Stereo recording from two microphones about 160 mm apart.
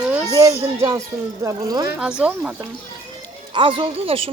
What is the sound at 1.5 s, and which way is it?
Speech, 25° right (ahead or behind).